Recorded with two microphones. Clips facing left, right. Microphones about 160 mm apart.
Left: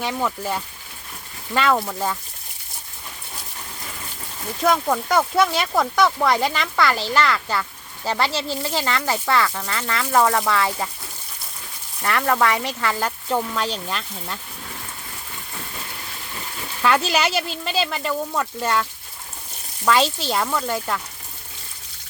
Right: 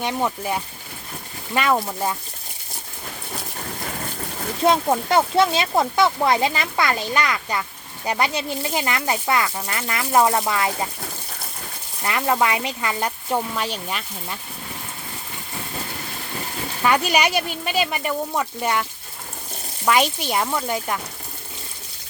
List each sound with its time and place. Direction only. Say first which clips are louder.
0.0 s speech: right 1 dB; 20° right (ahead or behind)
3.8 s a sound: right 8 dB; 55° right (ahead or behind)
4.6 s speech: right 1 dB; 25° right (ahead or behind)
12.0 s speech: left 1 dB; 15° right (ahead or behind)
16.8 s speech: even; 15° right (ahead or behind)